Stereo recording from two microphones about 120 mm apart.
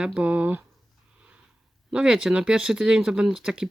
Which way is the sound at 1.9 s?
5° right (ahead or behind).